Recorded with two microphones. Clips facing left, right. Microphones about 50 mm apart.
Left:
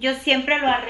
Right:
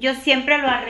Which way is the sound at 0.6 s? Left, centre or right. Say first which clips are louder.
Even; centre.